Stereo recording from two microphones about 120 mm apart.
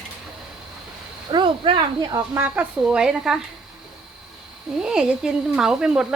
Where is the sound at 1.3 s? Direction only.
40° right (ahead or behind).